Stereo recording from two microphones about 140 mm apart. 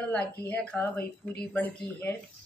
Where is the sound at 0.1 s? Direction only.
10° left (ahead or behind).